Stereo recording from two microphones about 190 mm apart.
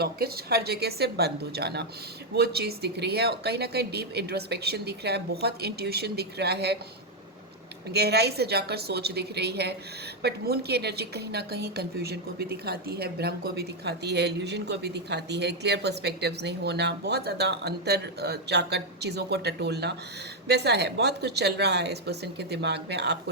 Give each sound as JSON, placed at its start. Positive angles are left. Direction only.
{"t": 0.0, "sound": "a woman's voice", "side_deg": -55}
{"t": 7.9, "sound": "a woman's voice", "side_deg": -60}